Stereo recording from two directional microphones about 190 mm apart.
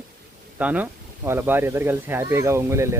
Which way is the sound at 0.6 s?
10° right (ahead or behind).